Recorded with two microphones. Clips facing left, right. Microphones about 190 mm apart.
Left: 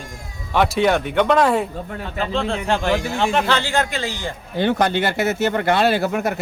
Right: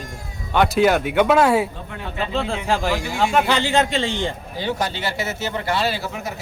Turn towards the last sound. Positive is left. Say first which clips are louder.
# left 7 dB
turn(degrees=60)  # may be behind; listen again after turning